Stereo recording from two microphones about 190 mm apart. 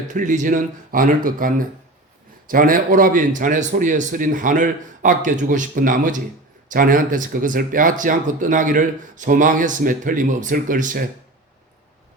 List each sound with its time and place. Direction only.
0.1 s speech: 40° right (ahead or behind)